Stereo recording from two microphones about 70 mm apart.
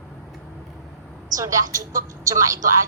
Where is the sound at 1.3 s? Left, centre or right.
Right.